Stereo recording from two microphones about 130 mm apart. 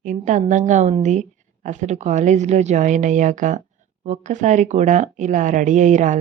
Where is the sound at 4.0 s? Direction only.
65° right (ahead or behind).